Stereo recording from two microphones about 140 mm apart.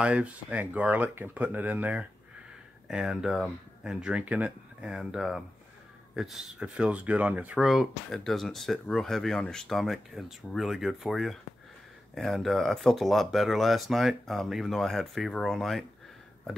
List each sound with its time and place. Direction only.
0.0 s speech: 10° right (ahead or behind)